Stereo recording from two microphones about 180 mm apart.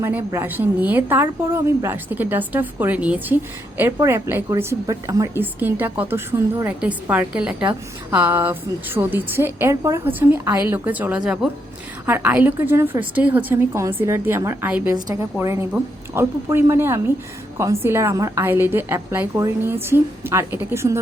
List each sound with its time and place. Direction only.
0.0 s a woman's voice: 10° right (ahead or behind)
14.9 s a woman's voice: 20° right (ahead or behind)